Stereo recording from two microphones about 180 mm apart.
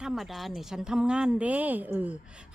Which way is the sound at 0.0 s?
Centre (ahead or behind).